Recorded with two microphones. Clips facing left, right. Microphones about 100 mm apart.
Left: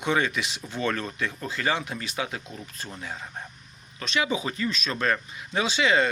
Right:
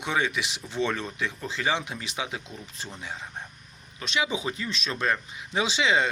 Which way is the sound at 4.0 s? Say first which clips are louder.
Left 1 dB; 15° right (ahead or behind).